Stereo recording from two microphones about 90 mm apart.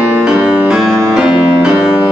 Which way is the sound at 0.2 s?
10° right (ahead or behind).